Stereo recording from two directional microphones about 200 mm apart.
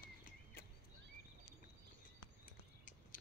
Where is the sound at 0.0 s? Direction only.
45° left (ahead or behind).